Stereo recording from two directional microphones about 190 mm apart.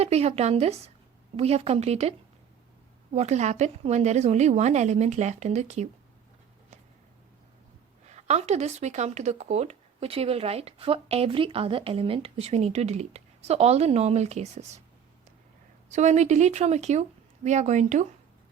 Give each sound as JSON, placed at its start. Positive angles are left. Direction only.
{"t": 0.0, "sound": "speech", "side_deg": -35}
{"t": 8.0, "sound": "speech", "side_deg": -35}
{"t": 15.9, "sound": "speech", "side_deg": -40}